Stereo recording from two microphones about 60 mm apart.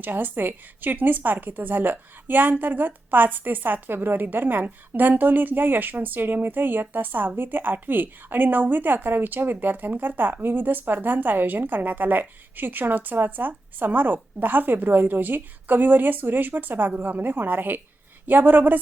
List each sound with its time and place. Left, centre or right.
0.0 s speech: right